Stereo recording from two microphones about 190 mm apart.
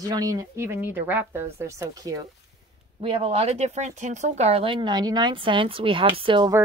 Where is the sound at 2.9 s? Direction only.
30° right (ahead or behind).